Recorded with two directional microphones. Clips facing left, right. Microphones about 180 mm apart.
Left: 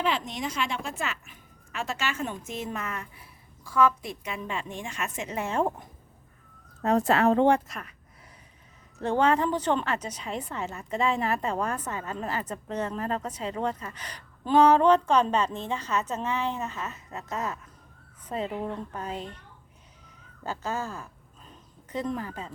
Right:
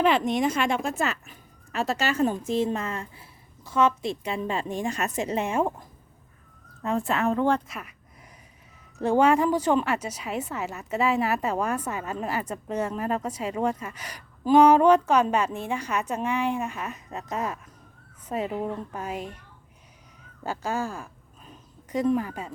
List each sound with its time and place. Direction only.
0.0 s speech: 55° right (ahead or behind); by 5.4 s 35° right (ahead or behind)
5.4 s a woman's voice: 15° right (ahead or behind)
7.2 s speech: 35° left (ahead or behind)
7.7 s a woman's voice: 5° right (ahead or behind)
9.0 s a woman's voice: 10° right (ahead or behind)
20.4 s a woman's voice: 10° right (ahead or behind)